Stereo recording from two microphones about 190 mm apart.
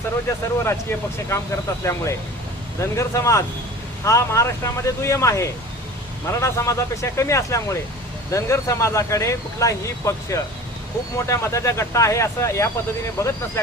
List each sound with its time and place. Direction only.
0.3 s speech: 10° left (ahead or behind)